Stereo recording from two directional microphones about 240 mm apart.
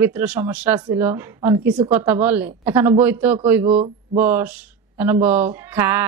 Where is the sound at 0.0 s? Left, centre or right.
Centre.